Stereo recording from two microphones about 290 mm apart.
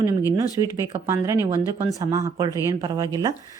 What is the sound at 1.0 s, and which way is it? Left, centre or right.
Speech, centre.